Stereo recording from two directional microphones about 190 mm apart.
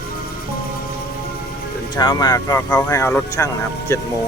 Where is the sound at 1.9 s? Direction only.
20° left (ahead or behind).